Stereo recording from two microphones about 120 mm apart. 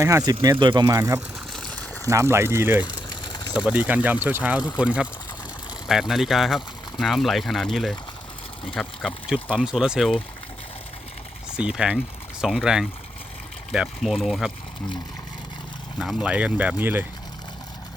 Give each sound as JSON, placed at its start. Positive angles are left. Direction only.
{"t": 0.0, "sound": "speech", "side_deg": -30}
{"t": 0.6, "sound": "speech", "side_deg": -40}
{"t": 0.9, "sound": "speech", "side_deg": -25}
{"t": 1.5, "sound": "a sound", "side_deg": 5}
{"t": 2.0, "sound": "speech", "side_deg": -25}
{"t": 2.8, "sound": "a sound", "side_deg": 40}
{"t": 3.7, "sound": "speech", "side_deg": -10}
{"t": 9.6, "sound": "speech", "side_deg": -5}
{"t": 11.5, "sound": "speech", "side_deg": -5}
{"t": 16.0, "sound": "speech", "side_deg": -5}